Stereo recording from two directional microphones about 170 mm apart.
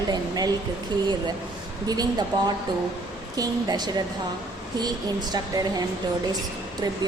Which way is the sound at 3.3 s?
25° right (ahead or behind).